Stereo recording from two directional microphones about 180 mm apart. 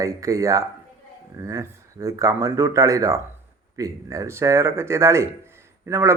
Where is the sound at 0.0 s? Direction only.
15° right (ahead or behind).